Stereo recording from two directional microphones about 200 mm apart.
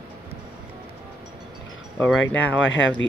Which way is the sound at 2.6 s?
70° left (ahead or behind).